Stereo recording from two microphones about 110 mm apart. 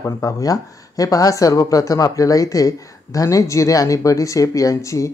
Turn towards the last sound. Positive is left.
turn(degrees=30)  # may be behind; listen again after turning